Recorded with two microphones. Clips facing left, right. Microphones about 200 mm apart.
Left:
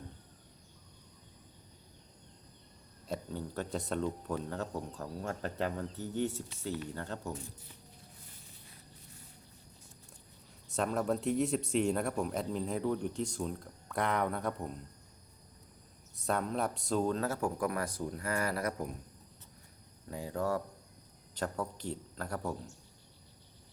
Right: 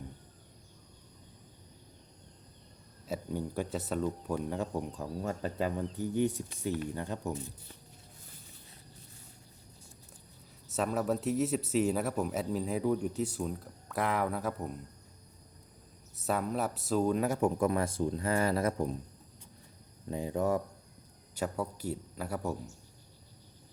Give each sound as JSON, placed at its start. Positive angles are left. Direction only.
{"t": 3.1, "sound": "speech", "side_deg": -10}
{"t": 10.7, "sound": "speech", "side_deg": -5}
{"t": 16.2, "sound": "speech", "side_deg": -5}
{"t": 20.1, "sound": "speech", "side_deg": -20}
{"t": 21.3, "sound": "speech", "side_deg": -10}